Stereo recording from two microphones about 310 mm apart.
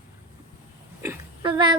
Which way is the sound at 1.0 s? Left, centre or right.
Centre.